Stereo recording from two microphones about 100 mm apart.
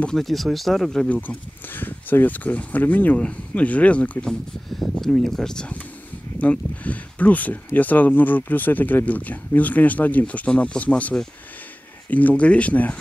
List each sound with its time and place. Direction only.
0.0 s speech: 5° left (ahead or behind)
1.0 s speech: 15° left (ahead or behind)